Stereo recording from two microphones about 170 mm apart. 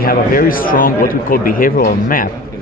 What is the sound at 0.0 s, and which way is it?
A man's voice, 60° left (ahead or behind).